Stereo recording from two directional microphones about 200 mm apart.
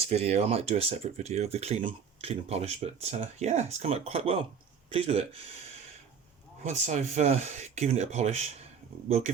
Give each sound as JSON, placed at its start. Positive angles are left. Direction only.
{"t": 0.1, "sound": "speech", "side_deg": -30}
{"t": 6.7, "sound": "speech", "side_deg": -35}